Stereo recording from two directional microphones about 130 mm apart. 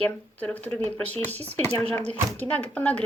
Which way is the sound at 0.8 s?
55° right (ahead or behind).